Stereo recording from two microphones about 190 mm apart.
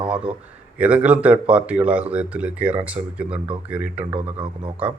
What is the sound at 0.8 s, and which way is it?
Speech, 5° right (ahead or behind).